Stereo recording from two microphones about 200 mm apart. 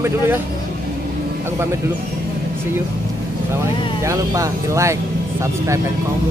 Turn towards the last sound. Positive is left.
turn(degrees=-15)  # may be behind; listen again after turning